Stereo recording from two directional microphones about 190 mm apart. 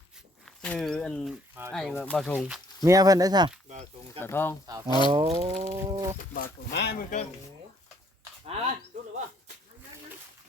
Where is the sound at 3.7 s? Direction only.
35° right (ahead or behind).